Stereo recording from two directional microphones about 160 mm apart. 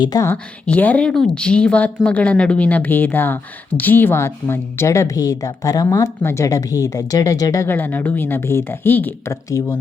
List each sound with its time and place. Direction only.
0.0 s speech: 25° left (ahead or behind)
0.3 s speech: 10° left (ahead or behind)